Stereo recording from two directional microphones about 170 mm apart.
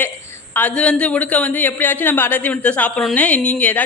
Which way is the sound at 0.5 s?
5° left (ahead or behind).